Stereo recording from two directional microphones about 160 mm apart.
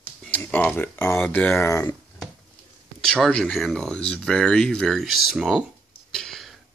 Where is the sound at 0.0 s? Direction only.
10° left (ahead or behind).